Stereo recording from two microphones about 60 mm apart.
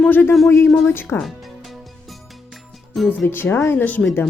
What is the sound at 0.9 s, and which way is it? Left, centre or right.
Speech, left.